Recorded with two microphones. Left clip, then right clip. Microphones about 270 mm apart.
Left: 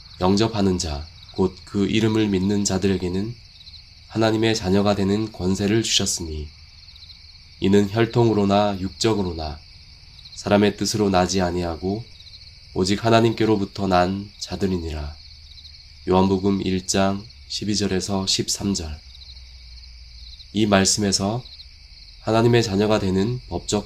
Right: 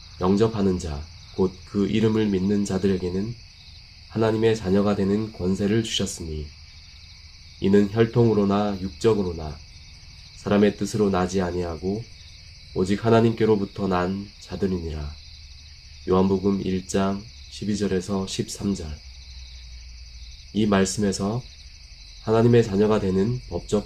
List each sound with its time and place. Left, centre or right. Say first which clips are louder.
0.2 s speech: left 1 dB; left
4.1 s speech: left 1 dB; left
7.6 s speech: left 1 dB; left
12.7 s speech: left 2 dB; left
16.0 s speech: left 2 dB; left
20.5 s speech: left 4 dB; left